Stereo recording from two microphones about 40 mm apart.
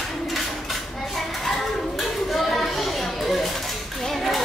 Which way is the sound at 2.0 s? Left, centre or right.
Centre.